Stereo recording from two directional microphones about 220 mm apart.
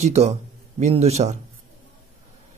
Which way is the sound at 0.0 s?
30° right (ahead or behind).